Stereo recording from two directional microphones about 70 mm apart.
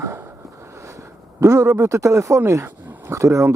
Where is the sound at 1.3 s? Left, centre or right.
Right.